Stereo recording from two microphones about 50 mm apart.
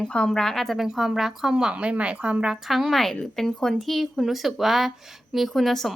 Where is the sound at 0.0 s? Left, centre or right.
Centre.